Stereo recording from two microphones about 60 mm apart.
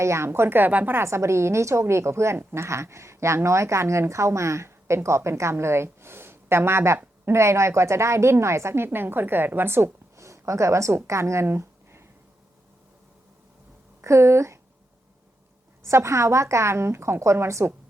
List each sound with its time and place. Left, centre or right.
0.0 s a woman's voice: right
0.3 s speech: right
0.9 s a woman's voice: right
2.6 s a woman's voice: right
10.2 s speech: right
14.0 s a woman's voice: right
15.8 s a woman's voice: right